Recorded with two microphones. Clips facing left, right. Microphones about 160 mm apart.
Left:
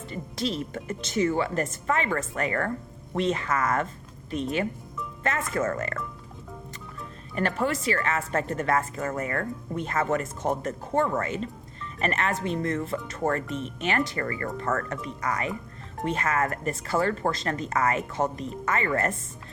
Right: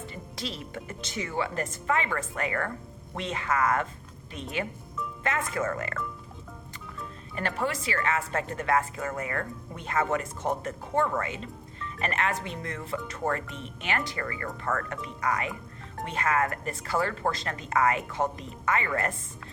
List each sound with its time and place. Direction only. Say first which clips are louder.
0.3 s speech: left 7 dB; 45° left (ahead or behind)
5.2 s speech: left 3 dB; 45° left (ahead or behind)
7.3 s speech: left 4 dB; 45° left (ahead or behind)